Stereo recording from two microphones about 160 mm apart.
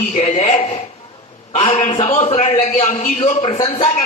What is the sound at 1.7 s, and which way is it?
A man's voice, 45° left (ahead or behind).